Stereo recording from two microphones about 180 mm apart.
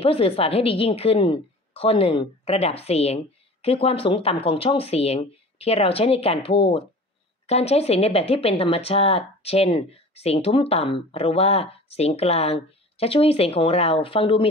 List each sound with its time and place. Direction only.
0.0 s speech: 30° left (ahead or behind)